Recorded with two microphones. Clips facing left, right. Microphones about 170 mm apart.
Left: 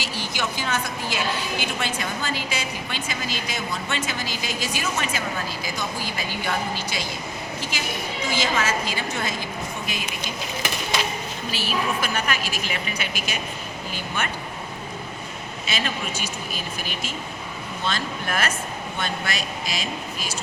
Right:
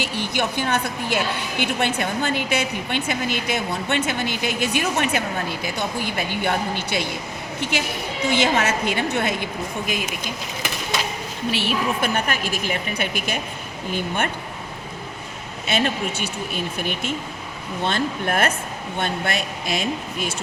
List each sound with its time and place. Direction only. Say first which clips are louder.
0.0 s a woman's voice: right 5 dB; 60° right (ahead or behind)
11.5 s a woman's voice: right 2 dB; 60° right (ahead or behind)
15.6 s a woman's voice: right 7 dB; 60° right (ahead or behind)